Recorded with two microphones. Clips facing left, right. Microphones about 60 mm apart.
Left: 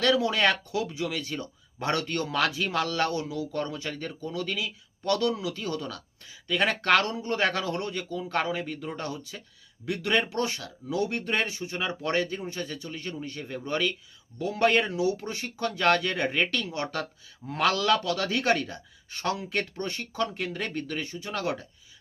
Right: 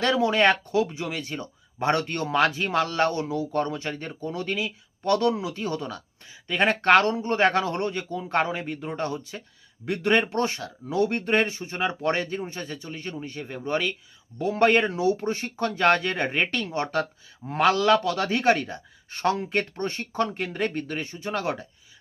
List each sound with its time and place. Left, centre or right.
0.0 s speech: right
14.3 s speech: right